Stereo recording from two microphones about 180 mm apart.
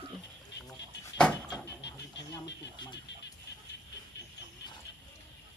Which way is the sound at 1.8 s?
75° left (ahead or behind).